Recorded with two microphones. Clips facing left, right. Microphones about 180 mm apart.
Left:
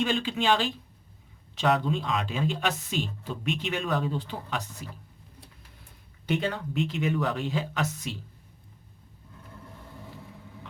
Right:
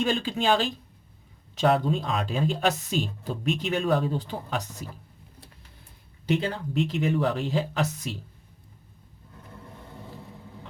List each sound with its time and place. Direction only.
0.0 s speech: 40° right (ahead or behind)
6.2 s speech: 30° right (ahead or behind)